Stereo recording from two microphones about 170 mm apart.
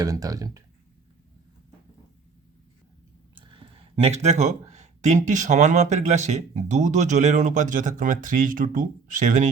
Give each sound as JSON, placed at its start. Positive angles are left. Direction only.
{"t": 0.0, "sound": "speech", "side_deg": -20}
{"t": 4.0, "sound": "speech", "side_deg": -40}